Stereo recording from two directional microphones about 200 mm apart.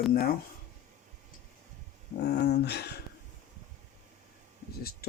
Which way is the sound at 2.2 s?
55° left (ahead or behind).